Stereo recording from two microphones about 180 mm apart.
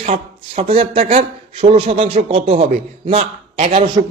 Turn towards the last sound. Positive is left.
turn(degrees=-35)  # may be behind; listen again after turning